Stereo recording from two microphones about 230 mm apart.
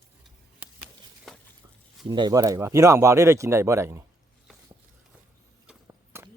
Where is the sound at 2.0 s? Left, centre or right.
Centre.